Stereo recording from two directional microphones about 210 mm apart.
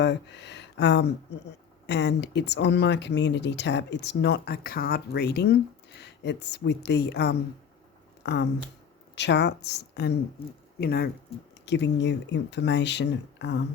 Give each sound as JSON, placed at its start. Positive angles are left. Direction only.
{"t": 0.0, "sound": "speech", "side_deg": 55}